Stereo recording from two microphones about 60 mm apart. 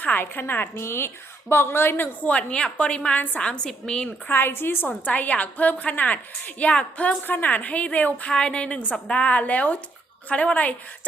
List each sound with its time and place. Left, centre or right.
0.0 s a woman's voice: left
2.2 s a woman's voice: centre
4.3 s a woman's voice: left
4.9 s a woman's voice: left